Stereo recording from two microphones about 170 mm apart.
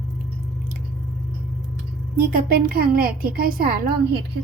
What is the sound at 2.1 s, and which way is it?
A woman's voice, 60° right (ahead or behind).